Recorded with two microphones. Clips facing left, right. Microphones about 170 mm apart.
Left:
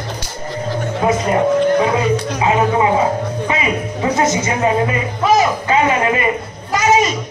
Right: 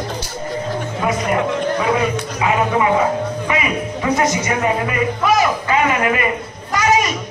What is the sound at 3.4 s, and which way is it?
A man's voice, 25° left (ahead or behind).